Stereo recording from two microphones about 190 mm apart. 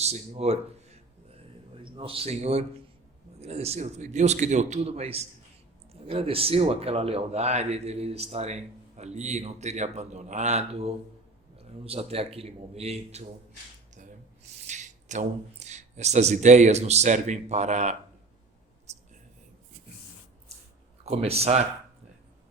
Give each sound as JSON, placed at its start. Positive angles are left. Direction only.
{"t": 0.0, "sound": "speech", "side_deg": -35}
{"t": 14.7, "sound": "speech", "side_deg": -40}
{"t": 18.9, "sound": "whispering", "side_deg": -35}
{"t": 21.0, "sound": "speech", "side_deg": -35}